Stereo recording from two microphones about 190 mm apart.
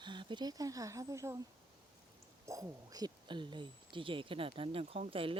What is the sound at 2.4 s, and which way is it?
Speech, 15° right (ahead or behind).